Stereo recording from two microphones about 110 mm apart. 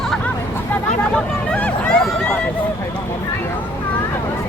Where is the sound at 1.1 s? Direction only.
10° left (ahead or behind).